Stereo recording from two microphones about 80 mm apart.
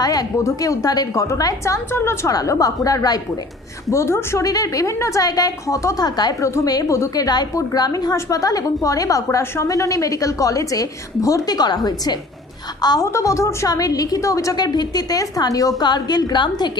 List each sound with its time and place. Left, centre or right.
0.0 s a woman's voice: left
2.6 s a woman's voice: left
3.9 s a woman's voice: left
4.4 s a woman's voice: left
6.4 s a woman's voice: left
13.0 s a woman's voice: left
13.7 s a woman's voice: left
14.6 s a woman's voice: left